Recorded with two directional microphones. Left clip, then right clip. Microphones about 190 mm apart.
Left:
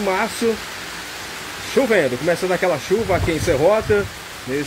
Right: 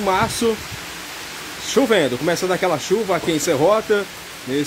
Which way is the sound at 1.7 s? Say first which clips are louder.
Even; 20° right (ahead or behind).